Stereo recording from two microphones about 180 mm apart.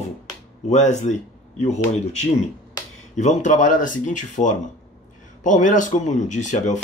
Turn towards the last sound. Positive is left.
turn(degrees=40)  # may be behind; listen again after turning